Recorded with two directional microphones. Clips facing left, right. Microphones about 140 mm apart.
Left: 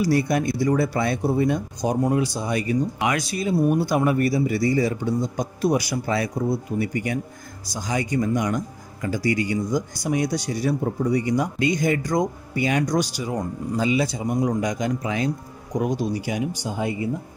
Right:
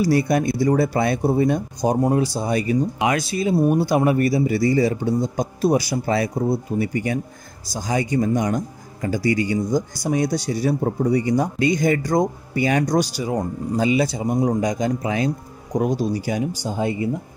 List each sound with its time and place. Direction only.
0.0 s speech: 35° right (ahead or behind)
3.9 s speech: 45° right (ahead or behind)